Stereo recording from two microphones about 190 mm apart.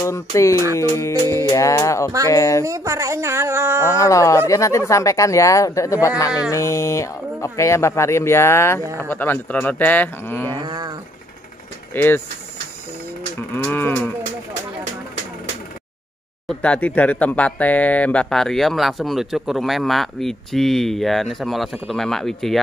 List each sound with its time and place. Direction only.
0.0 s speech: 15° left (ahead or behind)
2.6 s speech: 15° right (ahead or behind)
3.9 s speech: 15° left (ahead or behind)
10.5 s a sound: 20° right (ahead or behind)
11.9 s speech: 10° left (ahead or behind)
13.5 s speech: 10° left (ahead or behind)
16.4 s speech: 5° left (ahead or behind)